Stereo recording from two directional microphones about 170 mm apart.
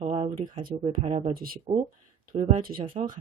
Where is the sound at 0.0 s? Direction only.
35° right (ahead or behind).